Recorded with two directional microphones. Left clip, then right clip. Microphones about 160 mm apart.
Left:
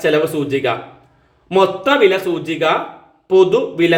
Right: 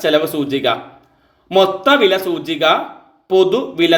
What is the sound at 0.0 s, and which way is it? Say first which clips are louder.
A man's voice: even; 25° right (ahead or behind).